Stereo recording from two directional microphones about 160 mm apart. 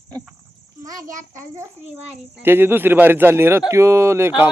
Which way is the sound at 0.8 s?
20° right (ahead or behind).